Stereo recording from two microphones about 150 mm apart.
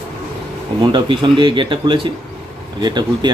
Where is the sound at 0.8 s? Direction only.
30° right (ahead or behind).